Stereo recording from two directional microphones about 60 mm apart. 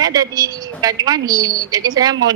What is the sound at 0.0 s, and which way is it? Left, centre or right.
A woman's voice, right.